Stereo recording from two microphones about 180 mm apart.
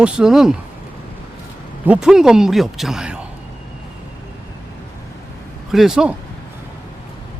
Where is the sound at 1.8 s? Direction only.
5° right (ahead or behind).